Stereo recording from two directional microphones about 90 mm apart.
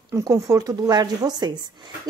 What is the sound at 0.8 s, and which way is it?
Speech, 50° right (ahead or behind).